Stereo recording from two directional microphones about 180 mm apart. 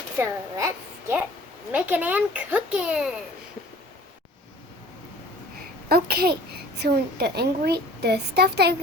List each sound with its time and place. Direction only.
0.2 s a child's voice: 15° right (ahead or behind)
5.9 s a child's voice: 60° right (ahead or behind)